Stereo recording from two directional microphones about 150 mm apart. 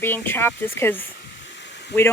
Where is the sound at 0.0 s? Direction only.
15° left (ahead or behind).